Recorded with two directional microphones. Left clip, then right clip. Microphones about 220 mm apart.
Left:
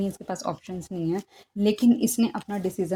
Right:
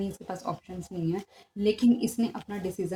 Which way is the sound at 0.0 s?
45° left (ahead or behind).